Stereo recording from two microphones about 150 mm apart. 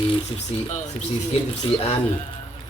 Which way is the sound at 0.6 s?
55° left (ahead or behind).